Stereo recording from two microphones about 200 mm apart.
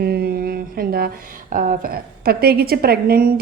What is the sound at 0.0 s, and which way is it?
Mantra, 50° right (ahead or behind).